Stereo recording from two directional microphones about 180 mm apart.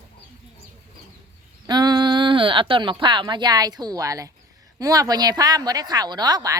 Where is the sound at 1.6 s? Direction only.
25° right (ahead or behind).